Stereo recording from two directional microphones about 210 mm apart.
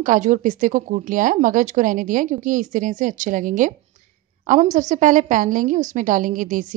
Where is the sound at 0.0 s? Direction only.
40° right (ahead or behind).